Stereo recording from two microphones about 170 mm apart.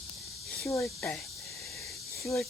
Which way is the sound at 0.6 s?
10° left (ahead or behind).